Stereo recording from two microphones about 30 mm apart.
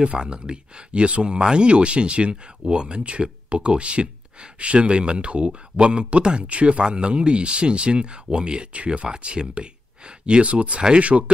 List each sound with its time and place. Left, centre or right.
0.2 s speech: right
6.5 s speech: right
6.9 s speech: right
8.7 s speech: right
10.5 s speech: right